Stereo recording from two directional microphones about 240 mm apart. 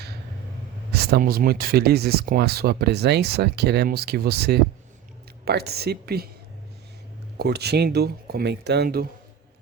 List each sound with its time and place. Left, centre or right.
0.9 s speech: right
7.3 s speech: right